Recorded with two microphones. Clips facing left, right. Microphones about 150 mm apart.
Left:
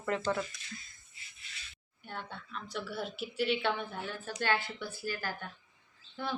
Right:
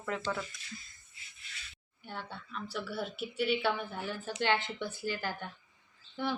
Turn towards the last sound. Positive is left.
turn(degrees=-15)  # may be behind; listen again after turning